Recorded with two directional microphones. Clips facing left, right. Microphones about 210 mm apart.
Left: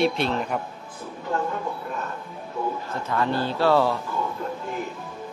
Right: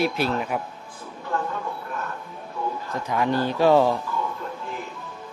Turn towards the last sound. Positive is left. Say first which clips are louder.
# right 2 dB
turn(degrees=-15)  # may be behind; listen again after turning